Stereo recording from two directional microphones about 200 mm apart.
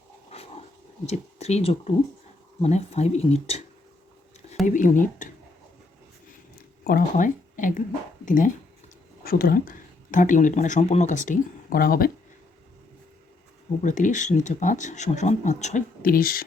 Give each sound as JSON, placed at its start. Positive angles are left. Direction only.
{"t": 1.0, "sound": "speech", "side_deg": 35}
{"t": 4.6, "sound": "speech", "side_deg": 40}
{"t": 6.8, "sound": "speech", "side_deg": 45}
{"t": 13.8, "sound": "speech", "side_deg": 40}